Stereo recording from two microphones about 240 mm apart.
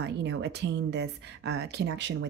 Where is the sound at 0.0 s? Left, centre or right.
Right.